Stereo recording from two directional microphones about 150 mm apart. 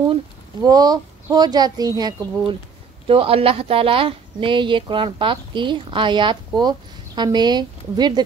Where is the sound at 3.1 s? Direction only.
40° right (ahead or behind).